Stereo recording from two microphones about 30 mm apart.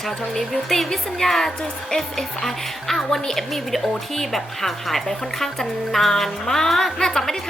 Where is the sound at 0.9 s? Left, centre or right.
Centre.